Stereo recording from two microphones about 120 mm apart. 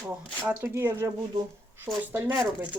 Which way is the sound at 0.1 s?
20° right (ahead or behind).